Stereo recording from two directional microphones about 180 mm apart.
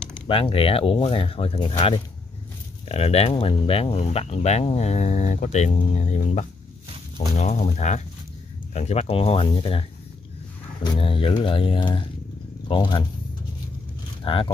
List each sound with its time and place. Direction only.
0.3 s speech: 30° left (ahead or behind)
14.2 s speech: 30° left (ahead or behind)